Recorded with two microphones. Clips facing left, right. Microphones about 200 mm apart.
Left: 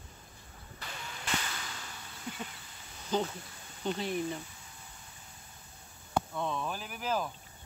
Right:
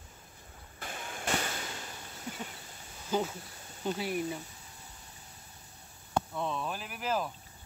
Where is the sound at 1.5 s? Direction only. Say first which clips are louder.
Right 3 dB; 25° right (ahead or behind).